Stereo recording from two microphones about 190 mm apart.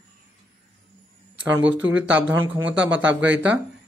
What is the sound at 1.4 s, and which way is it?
Speech, 10° right (ahead or behind).